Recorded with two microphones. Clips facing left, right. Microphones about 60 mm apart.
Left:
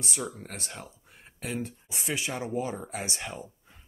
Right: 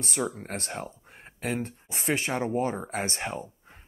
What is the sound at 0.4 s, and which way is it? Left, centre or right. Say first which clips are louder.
Speech: right 6 dB; right.